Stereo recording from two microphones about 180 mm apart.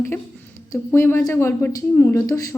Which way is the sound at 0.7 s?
15° left (ahead or behind).